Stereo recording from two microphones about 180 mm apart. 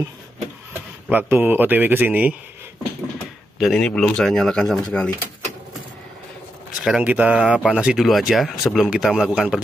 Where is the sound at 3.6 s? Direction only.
5° left (ahead or behind).